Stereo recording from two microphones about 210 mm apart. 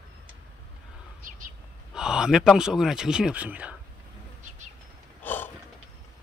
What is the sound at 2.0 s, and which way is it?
Speech, 5° right (ahead or behind).